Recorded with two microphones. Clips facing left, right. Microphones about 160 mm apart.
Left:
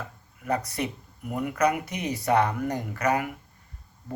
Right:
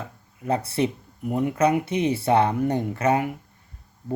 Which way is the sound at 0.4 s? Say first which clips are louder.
Right 5 dB; 30° right (ahead or behind).